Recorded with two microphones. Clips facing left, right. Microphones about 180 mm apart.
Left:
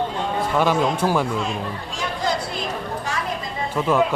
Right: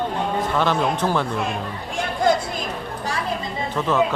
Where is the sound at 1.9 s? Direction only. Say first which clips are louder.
Right 6 dB; 55° right (ahead or behind).